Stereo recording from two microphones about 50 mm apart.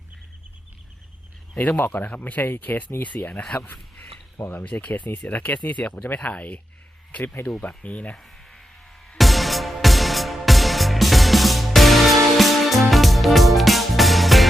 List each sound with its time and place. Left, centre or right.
1.5 s speech: left
4.6 s speech: left
8.1 s sheep: centre
9.1 s music: centre